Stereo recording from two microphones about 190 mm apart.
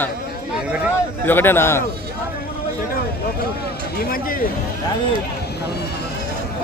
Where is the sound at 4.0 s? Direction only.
50° left (ahead or behind).